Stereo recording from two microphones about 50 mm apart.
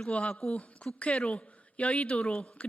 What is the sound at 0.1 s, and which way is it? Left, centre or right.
Speech, left.